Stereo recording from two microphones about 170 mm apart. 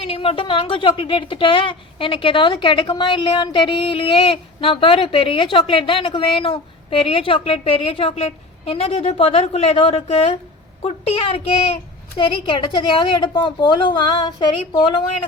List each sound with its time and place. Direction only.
0.0 s a woman's voice: 35° left (ahead or behind)